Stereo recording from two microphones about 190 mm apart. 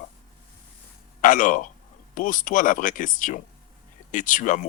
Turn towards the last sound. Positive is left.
turn(degrees=45)  # may be behind; listen again after turning